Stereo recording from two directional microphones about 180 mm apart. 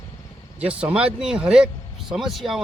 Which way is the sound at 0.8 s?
5° right (ahead or behind).